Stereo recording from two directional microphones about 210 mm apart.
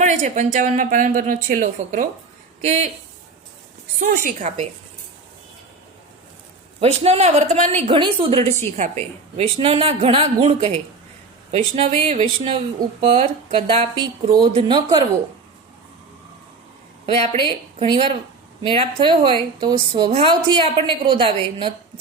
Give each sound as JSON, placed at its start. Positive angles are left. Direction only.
{"t": 0.0, "sound": "speech", "side_deg": -35}
{"t": 4.0, "sound": "speech", "side_deg": -40}
{"t": 6.7, "sound": "a woman's voice", "side_deg": -30}
{"t": 17.1, "sound": "a woman's voice", "side_deg": -25}